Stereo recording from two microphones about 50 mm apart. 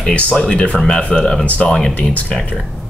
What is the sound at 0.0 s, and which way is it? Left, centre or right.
Speech, left.